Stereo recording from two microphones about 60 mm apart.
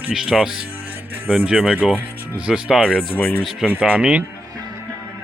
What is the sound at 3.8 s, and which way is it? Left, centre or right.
Speech, centre.